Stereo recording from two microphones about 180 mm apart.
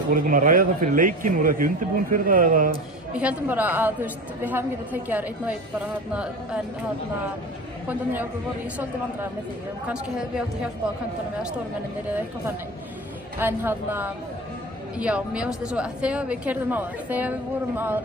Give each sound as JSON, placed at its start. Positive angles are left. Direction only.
{"t": 0.1, "sound": "a man's voice", "side_deg": -50}
{"t": 3.1, "sound": "a woman's voice", "side_deg": -5}
{"t": 7.9, "sound": "a woman's voice", "side_deg": -10}
{"t": 9.8, "sound": "speech", "side_deg": -5}
{"t": 12.1, "sound": "a woman's voice", "side_deg": -10}